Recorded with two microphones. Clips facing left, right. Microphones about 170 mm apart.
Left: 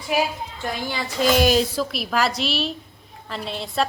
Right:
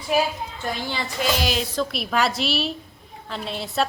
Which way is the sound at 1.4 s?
45° left (ahead or behind).